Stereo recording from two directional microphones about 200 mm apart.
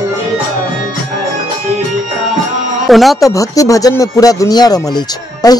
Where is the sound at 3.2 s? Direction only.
15° left (ahead or behind).